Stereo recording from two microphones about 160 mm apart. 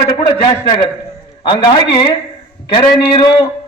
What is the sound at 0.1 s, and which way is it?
A man's voice, 35° left (ahead or behind).